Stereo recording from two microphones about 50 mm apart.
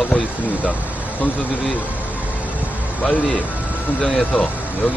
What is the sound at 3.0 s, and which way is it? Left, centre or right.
Speech, left.